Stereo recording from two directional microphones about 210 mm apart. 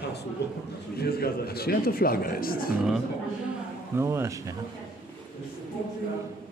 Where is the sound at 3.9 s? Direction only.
15° right (ahead or behind).